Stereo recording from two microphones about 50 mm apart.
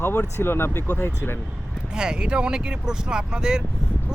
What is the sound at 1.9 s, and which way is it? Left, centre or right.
Speech, centre.